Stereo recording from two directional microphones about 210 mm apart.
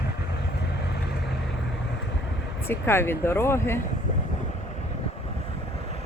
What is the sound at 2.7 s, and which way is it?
Speech, 10° left (ahead or behind).